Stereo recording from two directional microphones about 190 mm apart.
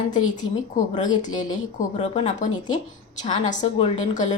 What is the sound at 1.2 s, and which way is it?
A woman's voice, 40° left (ahead or behind).